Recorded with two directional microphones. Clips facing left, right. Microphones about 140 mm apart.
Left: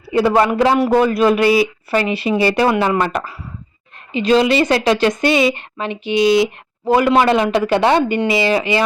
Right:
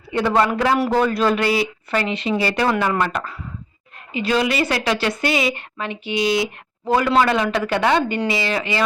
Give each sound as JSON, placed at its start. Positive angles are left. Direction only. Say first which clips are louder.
{"t": 0.3, "sound": "a woman's voice", "louder": "left 3 dB", "side_deg": 20}